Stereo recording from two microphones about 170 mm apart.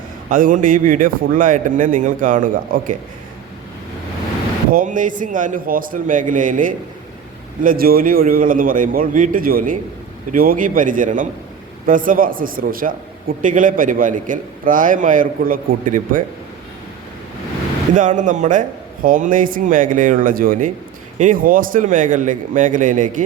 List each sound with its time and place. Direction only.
0.3 s a man's voice: 50° right (ahead or behind)
4.7 s a man's voice: 50° right (ahead or behind)
17.9 s a man's voice: 45° right (ahead or behind)